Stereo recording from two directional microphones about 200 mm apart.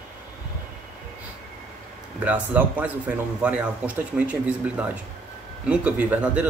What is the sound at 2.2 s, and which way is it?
Speech, 10° right (ahead or behind).